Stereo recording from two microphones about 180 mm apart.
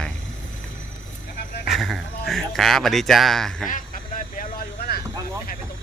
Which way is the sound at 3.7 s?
45° left (ahead or behind).